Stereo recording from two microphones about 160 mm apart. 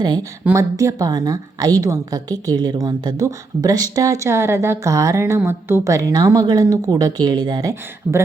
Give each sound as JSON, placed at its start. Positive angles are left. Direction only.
{"t": 0.0, "sound": "a woman's voice", "side_deg": -25}